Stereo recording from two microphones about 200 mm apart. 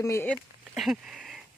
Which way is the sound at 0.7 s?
Centre (ahead or behind).